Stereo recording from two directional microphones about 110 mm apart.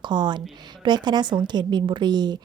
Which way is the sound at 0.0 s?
45° right (ahead or behind).